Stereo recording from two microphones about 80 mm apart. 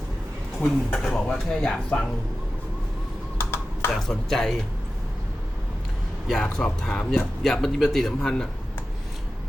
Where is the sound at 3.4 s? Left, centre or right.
Left.